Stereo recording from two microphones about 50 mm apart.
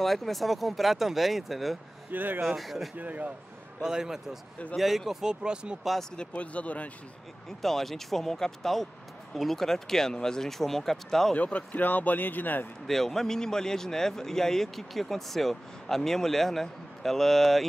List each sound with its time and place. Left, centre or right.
0.0 s speech: centre
2.0 s speech: right
2.4 s speech: centre
3.0 s speech: right
3.8 s speech: centre
6.1 s speech: left
7.4 s speech: centre
11.3 s speech: left
12.8 s speech: centre